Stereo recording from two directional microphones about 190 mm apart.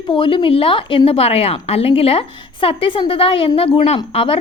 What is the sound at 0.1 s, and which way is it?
A woman's voice, 25° left (ahead or behind).